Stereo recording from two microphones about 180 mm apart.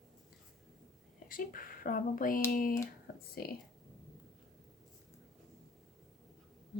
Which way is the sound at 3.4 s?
60° left (ahead or behind).